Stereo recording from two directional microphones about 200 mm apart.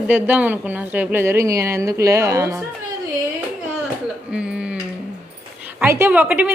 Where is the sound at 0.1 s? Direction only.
10° right (ahead or behind).